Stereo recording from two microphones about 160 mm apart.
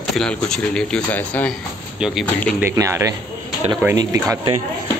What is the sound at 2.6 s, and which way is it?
Speech, 20° right (ahead or behind).